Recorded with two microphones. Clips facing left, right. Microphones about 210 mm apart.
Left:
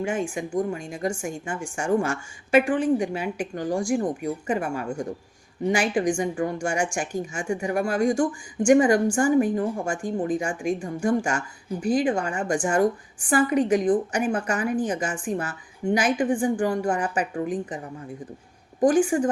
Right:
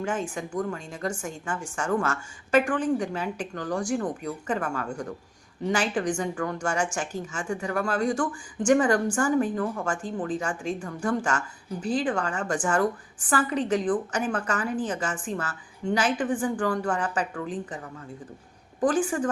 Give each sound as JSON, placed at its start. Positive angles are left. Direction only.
{"t": 0.0, "sound": "a woman's voice", "side_deg": 10}
{"t": 18.9, "sound": "a woman's voice", "side_deg": 15}